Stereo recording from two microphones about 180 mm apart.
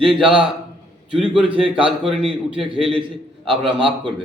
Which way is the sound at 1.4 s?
30° right (ahead or behind).